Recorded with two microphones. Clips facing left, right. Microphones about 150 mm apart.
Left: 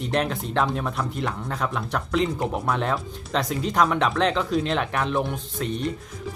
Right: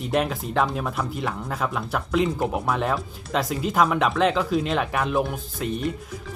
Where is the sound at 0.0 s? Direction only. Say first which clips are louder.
Right 1 dB; 5° right (ahead or behind).